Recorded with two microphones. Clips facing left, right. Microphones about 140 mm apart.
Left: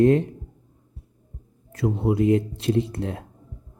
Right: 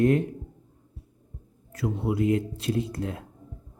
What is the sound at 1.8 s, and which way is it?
Speech, 25° left (ahead or behind).